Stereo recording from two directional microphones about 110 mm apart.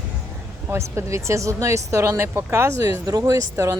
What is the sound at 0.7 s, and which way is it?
Speech, 25° right (ahead or behind).